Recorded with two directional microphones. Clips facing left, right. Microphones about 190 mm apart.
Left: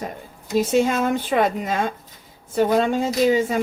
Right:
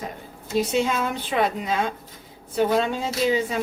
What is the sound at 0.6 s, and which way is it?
Speech, 50° left (ahead or behind).